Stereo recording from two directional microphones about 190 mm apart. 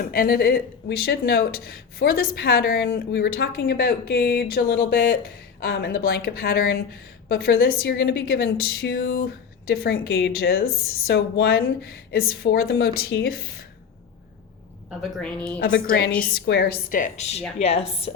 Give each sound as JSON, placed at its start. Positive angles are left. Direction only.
{"t": 0.0, "sound": "a woman's voice", "side_deg": 50}
{"t": 14.8, "sound": "a woman's voice", "side_deg": 0}
{"t": 15.5, "sound": "a woman's voice", "side_deg": 55}